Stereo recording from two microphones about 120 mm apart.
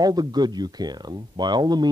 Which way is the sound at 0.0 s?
35° right (ahead or behind).